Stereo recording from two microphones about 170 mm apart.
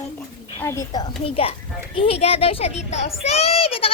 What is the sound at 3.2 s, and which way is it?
Child singing, 35° left (ahead or behind).